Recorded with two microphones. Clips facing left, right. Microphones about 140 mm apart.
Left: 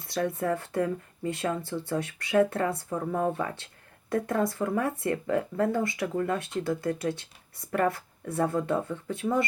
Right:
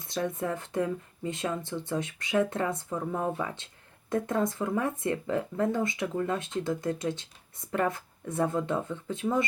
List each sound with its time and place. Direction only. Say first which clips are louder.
0.3 s speech: left 2 dB; 20° right (ahead or behind)